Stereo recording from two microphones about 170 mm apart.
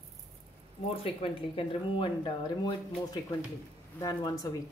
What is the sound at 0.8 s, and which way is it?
Speech, 35° left (ahead or behind).